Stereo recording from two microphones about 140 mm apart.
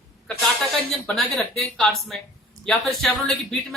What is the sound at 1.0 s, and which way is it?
A woman's voice, 5° left (ahead or behind).